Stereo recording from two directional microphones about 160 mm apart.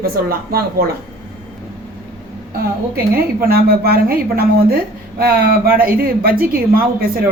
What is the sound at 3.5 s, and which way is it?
A woman's voice, 70° right (ahead or behind).